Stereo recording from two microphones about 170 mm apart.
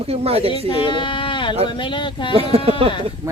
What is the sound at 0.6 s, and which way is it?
Speech, 30° left (ahead or behind).